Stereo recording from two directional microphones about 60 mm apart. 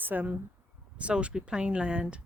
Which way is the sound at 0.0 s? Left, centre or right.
Right.